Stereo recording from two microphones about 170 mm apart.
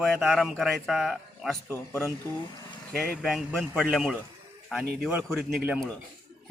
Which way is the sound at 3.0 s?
Centre (ahead or behind).